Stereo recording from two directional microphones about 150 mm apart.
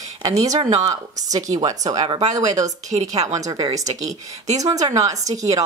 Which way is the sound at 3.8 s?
50° right (ahead or behind).